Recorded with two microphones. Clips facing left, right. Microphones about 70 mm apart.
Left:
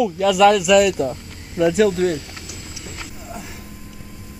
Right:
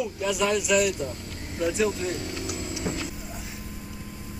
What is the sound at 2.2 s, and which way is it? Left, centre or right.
Vehicle, right.